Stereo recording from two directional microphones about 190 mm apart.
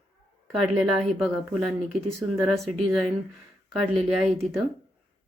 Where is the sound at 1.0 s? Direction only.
Centre (ahead or behind).